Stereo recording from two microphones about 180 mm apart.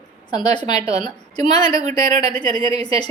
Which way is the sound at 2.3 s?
25° left (ahead or behind).